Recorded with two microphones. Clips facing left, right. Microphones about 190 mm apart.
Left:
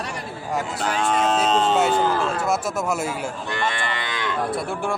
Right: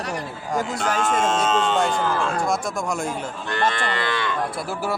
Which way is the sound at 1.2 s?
35° left (ahead or behind).